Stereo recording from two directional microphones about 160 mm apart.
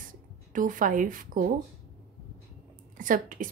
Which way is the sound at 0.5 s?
55° right (ahead or behind).